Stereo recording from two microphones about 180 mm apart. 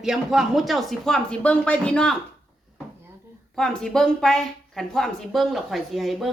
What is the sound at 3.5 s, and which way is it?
A woman's voice, 5° left (ahead or behind).